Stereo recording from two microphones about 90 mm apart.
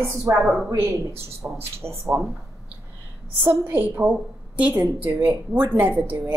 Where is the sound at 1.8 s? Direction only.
30° right (ahead or behind).